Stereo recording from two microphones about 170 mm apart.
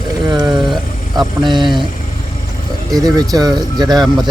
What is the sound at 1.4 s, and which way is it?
Speech, 25° right (ahead or behind).